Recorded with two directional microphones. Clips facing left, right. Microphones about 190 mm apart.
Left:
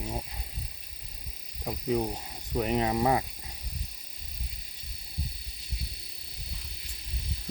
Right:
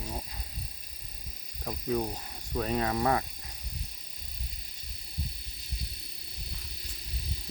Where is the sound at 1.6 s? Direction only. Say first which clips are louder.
Left 2 dB; 15° left (ahead or behind).